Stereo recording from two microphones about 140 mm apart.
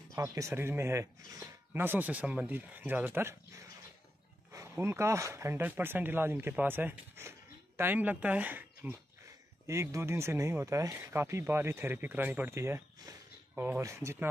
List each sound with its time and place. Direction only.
0.1 s speech: 20° right (ahead or behind)